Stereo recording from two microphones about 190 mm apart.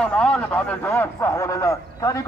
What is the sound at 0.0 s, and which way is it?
A man's voice, 5° left (ahead or behind).